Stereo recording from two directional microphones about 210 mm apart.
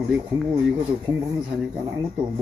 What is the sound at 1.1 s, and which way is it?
Speech, 15° right (ahead or behind).